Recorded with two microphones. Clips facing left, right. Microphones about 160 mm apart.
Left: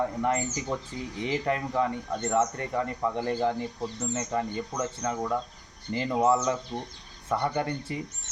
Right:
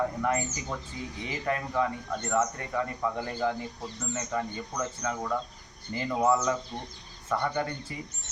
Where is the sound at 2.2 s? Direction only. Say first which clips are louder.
Left 2 dB; 30° left (ahead or behind).